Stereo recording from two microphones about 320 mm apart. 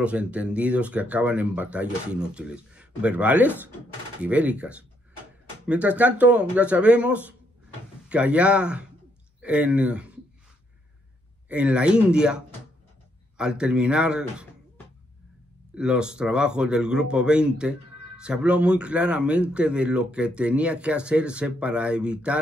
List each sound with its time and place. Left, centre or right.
0.0 s speech: centre
11.4 s speech: centre
15.7 s speech: centre